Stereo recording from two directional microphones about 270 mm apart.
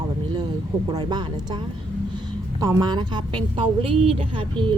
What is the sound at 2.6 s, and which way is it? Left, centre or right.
A woman's voice, centre.